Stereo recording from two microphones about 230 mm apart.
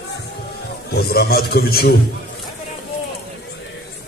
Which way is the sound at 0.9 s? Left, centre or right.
Left.